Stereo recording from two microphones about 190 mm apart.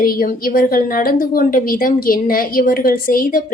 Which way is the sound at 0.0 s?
50° left (ahead or behind).